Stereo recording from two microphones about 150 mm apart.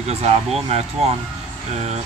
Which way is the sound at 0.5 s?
45° right (ahead or behind).